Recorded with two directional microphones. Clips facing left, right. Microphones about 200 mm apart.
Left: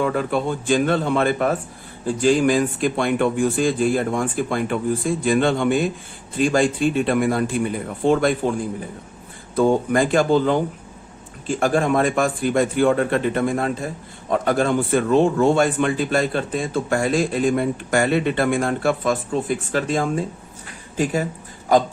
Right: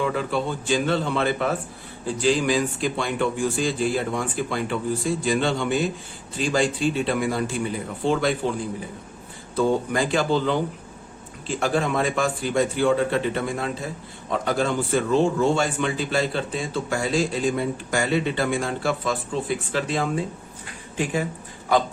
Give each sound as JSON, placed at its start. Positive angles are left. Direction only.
{"t": 0.0, "sound": "speech", "side_deg": 50}
{"t": 9.6, "sound": "speech", "side_deg": 50}